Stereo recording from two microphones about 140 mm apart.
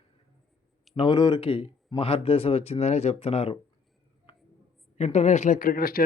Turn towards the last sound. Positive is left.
turn(degrees=90)